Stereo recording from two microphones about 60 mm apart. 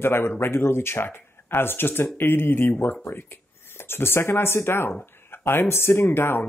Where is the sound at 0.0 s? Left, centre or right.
Left.